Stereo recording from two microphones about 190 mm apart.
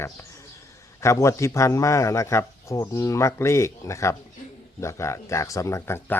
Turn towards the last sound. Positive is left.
turn(degrees=10)  # may be behind; listen again after turning